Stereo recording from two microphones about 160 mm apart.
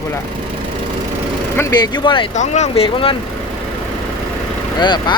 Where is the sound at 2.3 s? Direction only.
45° left (ahead or behind).